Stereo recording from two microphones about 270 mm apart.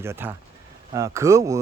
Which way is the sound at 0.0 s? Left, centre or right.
Centre.